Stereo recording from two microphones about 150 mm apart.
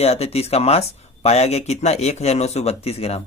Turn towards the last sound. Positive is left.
turn(degrees=45)  # may be behind; listen again after turning